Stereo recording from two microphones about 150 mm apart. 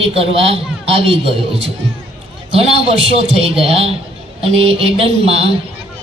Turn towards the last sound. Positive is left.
turn(degrees=-40)  # may be behind; listen again after turning